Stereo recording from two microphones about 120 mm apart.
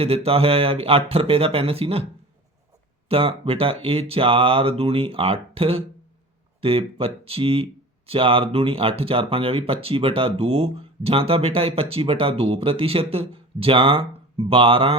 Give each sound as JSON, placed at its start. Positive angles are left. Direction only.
{"t": 0.0, "sound": "speech", "side_deg": -55}
{"t": 3.1, "sound": "speech", "side_deg": -50}